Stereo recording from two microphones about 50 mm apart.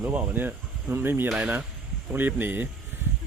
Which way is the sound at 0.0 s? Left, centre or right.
Right.